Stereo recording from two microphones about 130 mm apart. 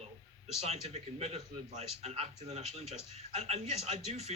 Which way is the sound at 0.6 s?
55° right (ahead or behind).